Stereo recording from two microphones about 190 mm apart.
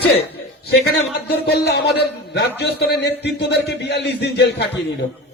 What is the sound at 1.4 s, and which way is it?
Speech, 60° left (ahead or behind).